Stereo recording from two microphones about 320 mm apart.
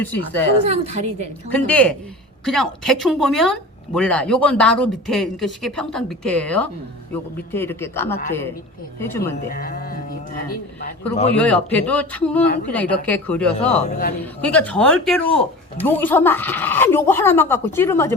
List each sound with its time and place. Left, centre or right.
0.0 s speech: centre
0.6 s a woman's voice: centre
1.5 s a woman's voice: centre
9.5 s music: left
11.3 s speech: centre
13.7 s a man's voice: centre
14.4 s a woman's voice: centre